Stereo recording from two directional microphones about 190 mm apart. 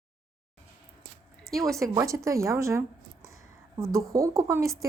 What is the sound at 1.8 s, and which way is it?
A woman's voice, 15° right (ahead or behind).